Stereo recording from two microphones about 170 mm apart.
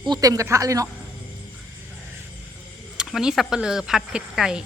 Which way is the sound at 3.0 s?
5° right (ahead or behind).